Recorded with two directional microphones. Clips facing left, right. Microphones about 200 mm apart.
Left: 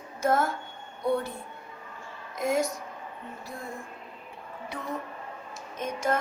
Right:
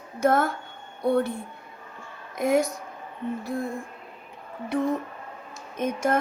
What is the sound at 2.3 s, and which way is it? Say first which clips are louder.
Speech: right 4 dB; 60° right (ahead or behind).